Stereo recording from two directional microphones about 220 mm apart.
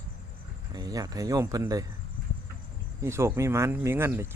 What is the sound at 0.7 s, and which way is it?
Speech, 15° right (ahead or behind).